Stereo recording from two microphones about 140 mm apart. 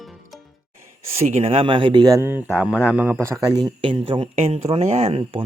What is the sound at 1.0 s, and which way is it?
Speech, 45° right (ahead or behind).